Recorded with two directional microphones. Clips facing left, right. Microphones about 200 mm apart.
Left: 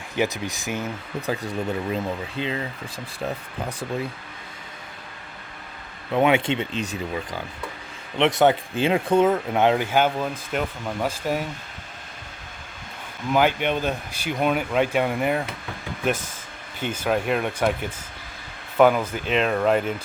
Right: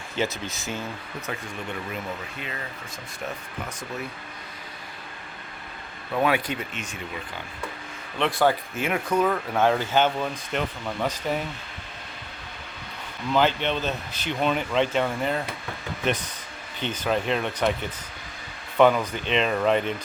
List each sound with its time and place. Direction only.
0.2 s speech: 15° left (ahead or behind)
1.3 s speech: 35° left (ahead or behind)
6.1 s speech: 25° left (ahead or behind)
8.2 s speech: 20° left (ahead or behind)
13.3 s speech: 10° left (ahead or behind)
16.8 s speech: 10° left (ahead or behind)